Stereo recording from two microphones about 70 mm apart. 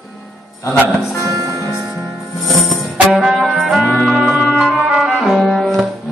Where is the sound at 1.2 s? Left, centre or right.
Right.